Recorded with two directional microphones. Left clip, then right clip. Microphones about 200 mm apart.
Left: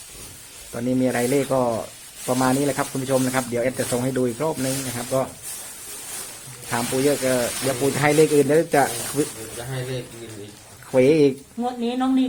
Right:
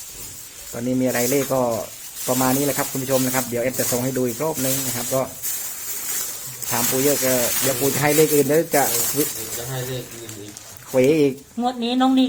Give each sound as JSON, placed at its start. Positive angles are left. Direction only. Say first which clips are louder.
{"t": 0.7, "sound": "speech", "louder": "even", "side_deg": 5}
{"t": 6.7, "sound": "speech", "louder": "right 1 dB", "side_deg": 10}
{"t": 10.9, "sound": "speech", "louder": "left 1 dB", "side_deg": 5}
{"t": 11.6, "sound": "speech", "louder": "right 3 dB", "side_deg": -50}